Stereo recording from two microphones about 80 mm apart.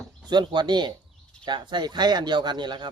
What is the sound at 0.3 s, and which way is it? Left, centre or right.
Speech, right.